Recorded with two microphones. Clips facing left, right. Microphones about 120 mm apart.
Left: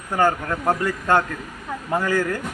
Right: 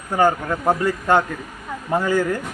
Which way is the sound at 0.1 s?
15° right (ahead or behind).